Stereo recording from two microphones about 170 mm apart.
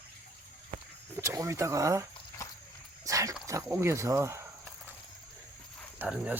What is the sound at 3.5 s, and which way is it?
Speech, 15° right (ahead or behind).